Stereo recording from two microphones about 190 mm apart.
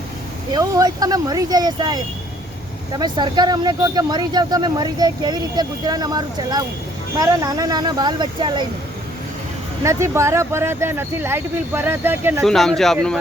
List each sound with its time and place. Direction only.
0.5 s speech: 20° right (ahead or behind)
3.0 s speech: 20° right (ahead or behind)
9.8 s speech: 15° right (ahead or behind)
12.5 s speech: centre (ahead or behind)